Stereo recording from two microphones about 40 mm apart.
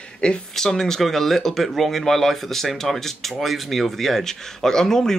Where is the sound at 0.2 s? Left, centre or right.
Left.